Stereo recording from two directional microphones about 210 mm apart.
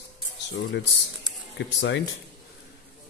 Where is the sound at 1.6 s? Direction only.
60° left (ahead or behind).